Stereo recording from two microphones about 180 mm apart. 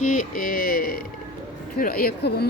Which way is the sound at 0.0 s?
45° left (ahead or behind).